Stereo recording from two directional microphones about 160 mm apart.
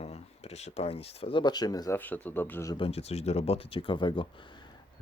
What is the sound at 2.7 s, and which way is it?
Speech, 35° left (ahead or behind).